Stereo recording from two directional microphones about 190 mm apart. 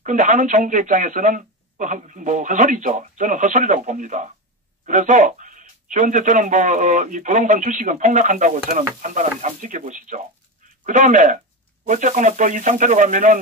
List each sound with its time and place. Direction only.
0.0 s speech: 40° right (ahead or behind)